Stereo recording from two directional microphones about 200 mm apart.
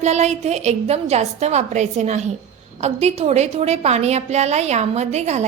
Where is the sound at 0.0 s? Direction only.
35° right (ahead or behind).